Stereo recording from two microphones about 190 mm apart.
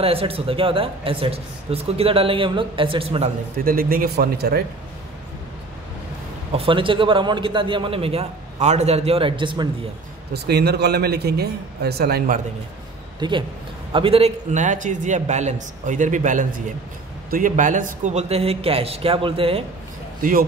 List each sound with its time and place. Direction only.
0.0 s speech: 30° right (ahead or behind)
3.5 s speech: 50° right (ahead or behind)
6.5 s speech: 30° right (ahead or behind)
10.3 s speech: 60° right (ahead or behind)
13.2 s a man's voice: 25° right (ahead or behind)
20.2 s speech: 45° right (ahead or behind)